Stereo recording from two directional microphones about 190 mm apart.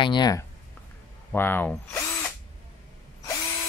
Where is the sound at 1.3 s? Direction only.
10° left (ahead or behind).